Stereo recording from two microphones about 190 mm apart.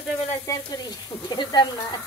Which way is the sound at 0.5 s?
20° left (ahead or behind).